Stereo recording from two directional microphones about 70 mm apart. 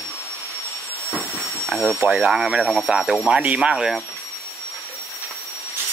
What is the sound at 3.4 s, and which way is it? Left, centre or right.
Speech, centre.